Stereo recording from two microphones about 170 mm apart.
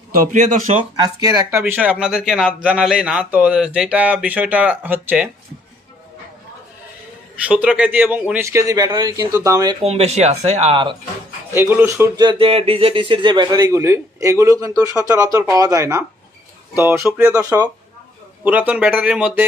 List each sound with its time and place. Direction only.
0.1 s speech: 45° right (ahead or behind)
0.9 s speech: 20° right (ahead or behind)
1.5 s speech: 10° right (ahead or behind)
7.4 s speech: 10° right (ahead or behind)
9.8 s speech: 40° right (ahead or behind)
11.5 s speech: 15° right (ahead or behind)
17.4 s speech: 20° right (ahead or behind)